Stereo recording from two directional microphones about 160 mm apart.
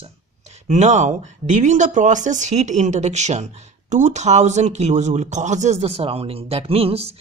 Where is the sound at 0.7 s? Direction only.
50° right (ahead or behind).